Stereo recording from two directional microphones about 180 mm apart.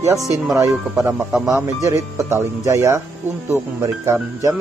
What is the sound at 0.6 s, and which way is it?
Speech, 15° right (ahead or behind).